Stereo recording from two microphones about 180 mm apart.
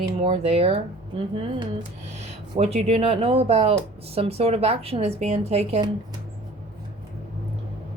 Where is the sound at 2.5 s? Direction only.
35° right (ahead or behind).